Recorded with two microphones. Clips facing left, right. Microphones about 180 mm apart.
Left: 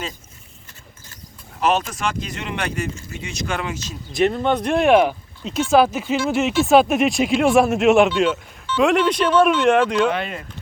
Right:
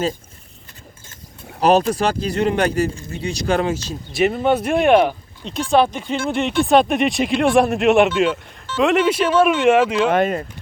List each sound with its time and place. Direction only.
1.6 s speech: 35° right (ahead or behind)
4.1 s speech: 5° right (ahead or behind)
10.1 s speech: 45° right (ahead or behind)